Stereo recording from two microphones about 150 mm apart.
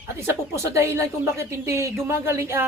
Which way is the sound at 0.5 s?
20° right (ahead or behind).